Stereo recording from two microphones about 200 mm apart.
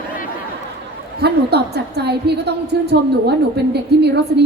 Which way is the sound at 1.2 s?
55° right (ahead or behind).